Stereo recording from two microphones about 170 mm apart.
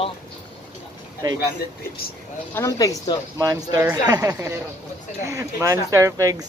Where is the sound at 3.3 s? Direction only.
20° right (ahead or behind).